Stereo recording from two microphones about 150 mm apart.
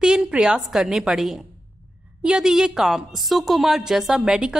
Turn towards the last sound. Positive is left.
turn(degrees=-5)  # may be behind; listen again after turning